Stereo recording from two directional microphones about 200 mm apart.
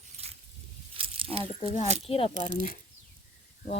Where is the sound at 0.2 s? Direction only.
30° right (ahead or behind).